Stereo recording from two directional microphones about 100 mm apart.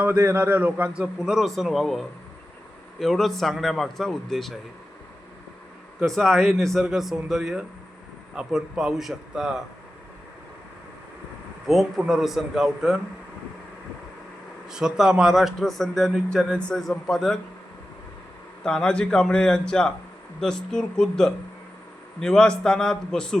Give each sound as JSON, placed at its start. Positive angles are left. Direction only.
{"t": 0.1, "sound": "a man's voice", "side_deg": -25}
{"t": 0.3, "sound": "speech", "side_deg": -15}
{"t": 6.1, "sound": "speech", "side_deg": 5}
{"t": 11.6, "sound": "speech", "side_deg": -5}
{"t": 14.7, "sound": "speech", "side_deg": -5}
{"t": 18.6, "sound": "speech", "side_deg": 5}